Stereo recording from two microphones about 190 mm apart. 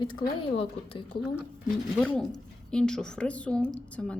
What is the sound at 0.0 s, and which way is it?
Speech, 25° left (ahead or behind).